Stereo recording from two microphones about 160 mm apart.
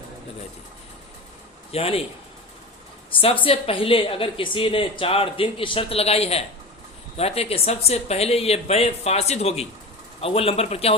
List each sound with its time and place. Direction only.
1.7 s speech: 35° left (ahead or behind)
3.2 s speech: 35° left (ahead or behind)